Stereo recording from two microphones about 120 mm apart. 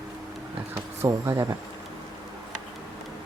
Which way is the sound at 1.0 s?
25° right (ahead or behind).